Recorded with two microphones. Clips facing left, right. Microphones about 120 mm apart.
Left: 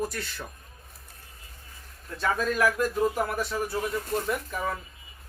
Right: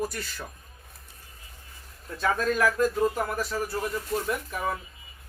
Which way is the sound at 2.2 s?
Centre (ahead or behind).